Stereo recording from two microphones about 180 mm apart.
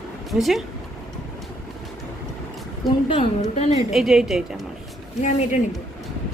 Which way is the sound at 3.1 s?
35° left (ahead or behind).